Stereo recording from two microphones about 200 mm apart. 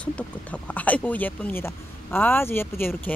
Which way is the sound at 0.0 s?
5° left (ahead or behind).